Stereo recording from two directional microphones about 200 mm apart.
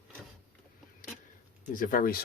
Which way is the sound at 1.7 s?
40° left (ahead or behind).